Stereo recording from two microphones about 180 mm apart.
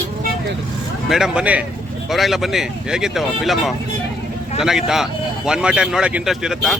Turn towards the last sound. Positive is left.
turn(degrees=0)  # may be behind; listen again after turning